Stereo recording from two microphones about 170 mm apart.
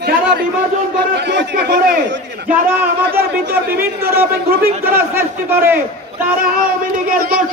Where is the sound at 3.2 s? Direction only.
65° right (ahead or behind).